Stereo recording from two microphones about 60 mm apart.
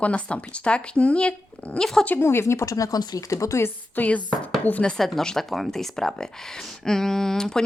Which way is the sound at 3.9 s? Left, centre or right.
Left.